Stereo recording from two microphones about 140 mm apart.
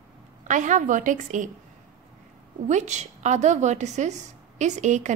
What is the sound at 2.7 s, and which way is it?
A woman's voice, 55° right (ahead or behind).